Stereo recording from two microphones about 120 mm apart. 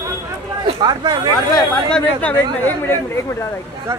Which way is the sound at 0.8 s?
35° right (ahead or behind).